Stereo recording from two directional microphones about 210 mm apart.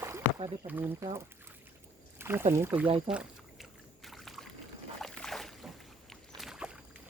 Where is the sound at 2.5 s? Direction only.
10° right (ahead or behind).